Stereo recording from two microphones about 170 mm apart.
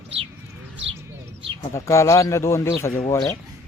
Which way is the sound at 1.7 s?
15° left (ahead or behind).